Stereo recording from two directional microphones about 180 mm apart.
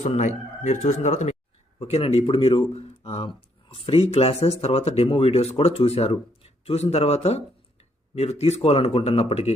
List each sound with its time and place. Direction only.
0.0 s speech: 40° left (ahead or behind)